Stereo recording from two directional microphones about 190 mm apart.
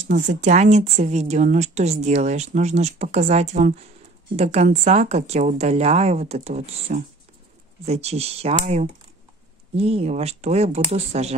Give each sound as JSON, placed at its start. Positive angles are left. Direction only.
{"t": 0.1, "sound": "speech", "side_deg": -40}